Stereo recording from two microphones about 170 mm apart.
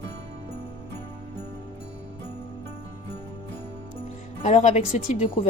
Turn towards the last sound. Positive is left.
turn(degrees=40)  # may be behind; listen again after turning